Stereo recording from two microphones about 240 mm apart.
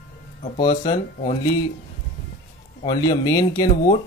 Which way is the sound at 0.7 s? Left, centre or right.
Left.